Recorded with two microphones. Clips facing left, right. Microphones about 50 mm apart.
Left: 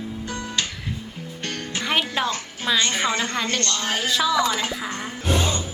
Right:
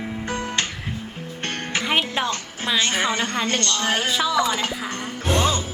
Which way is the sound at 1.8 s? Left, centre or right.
Centre.